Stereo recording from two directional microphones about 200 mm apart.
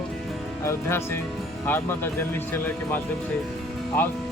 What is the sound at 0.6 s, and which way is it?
Speech, 15° left (ahead or behind).